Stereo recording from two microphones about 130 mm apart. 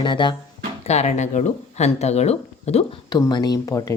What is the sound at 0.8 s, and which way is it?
Speech, 55° left (ahead or behind).